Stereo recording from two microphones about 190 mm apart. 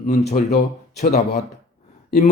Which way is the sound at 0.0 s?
35° left (ahead or behind).